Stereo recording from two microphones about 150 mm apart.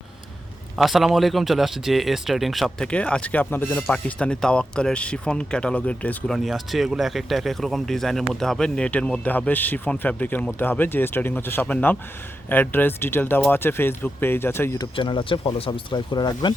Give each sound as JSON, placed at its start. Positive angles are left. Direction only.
{"t": 0.8, "sound": "a man's voice", "side_deg": 0}
{"t": 14.8, "sound": "speech", "side_deg": 30}